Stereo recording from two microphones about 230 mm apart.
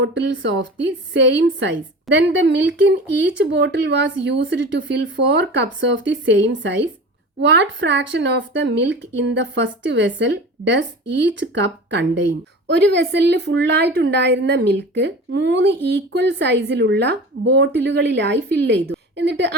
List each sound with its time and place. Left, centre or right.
0.0 s a woman's voice: right